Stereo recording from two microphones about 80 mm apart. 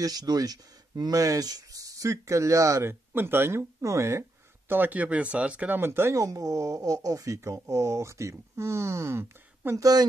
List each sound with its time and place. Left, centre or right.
0.0 s speech: right
2.9 s speech: right
5.8 s speech: right
9.8 s speech: right